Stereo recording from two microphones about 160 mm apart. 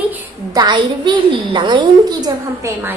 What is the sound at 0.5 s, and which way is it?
A woman's voice, 25° right (ahead or behind).